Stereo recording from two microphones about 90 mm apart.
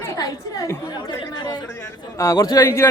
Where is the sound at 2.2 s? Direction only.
35° left (ahead or behind).